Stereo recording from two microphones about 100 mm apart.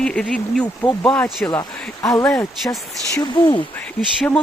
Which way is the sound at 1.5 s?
35° left (ahead or behind).